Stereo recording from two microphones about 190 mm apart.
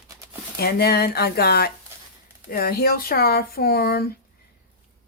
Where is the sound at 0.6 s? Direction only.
55° left (ahead or behind).